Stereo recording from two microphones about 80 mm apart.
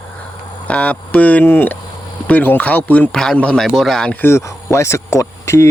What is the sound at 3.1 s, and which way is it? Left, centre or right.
Speech, centre.